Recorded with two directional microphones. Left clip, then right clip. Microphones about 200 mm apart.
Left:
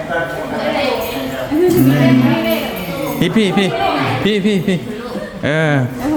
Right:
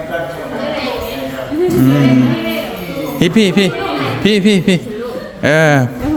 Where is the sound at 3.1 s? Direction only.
20° right (ahead or behind).